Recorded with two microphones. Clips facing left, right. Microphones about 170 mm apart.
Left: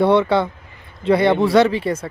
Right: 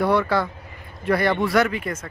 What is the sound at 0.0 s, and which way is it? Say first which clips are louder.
Speech: left 5 dB; 25° left (ahead or behind).